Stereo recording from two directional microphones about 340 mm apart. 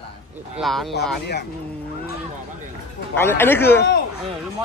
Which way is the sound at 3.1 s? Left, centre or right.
Centre.